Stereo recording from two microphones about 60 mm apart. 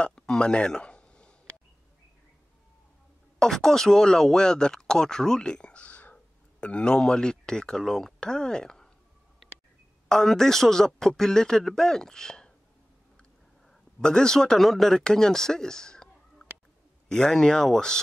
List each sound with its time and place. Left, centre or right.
0.0 s a sound: centre
3.3 s speech: centre
10.0 s speech: centre
13.7 s a man's voice: centre